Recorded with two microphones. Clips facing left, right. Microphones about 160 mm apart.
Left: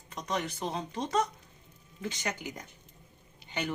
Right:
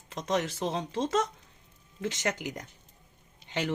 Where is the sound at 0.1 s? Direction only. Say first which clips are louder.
Right 4 dB; 90° right.